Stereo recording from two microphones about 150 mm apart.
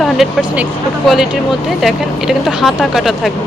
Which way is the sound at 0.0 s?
Centre (ahead or behind).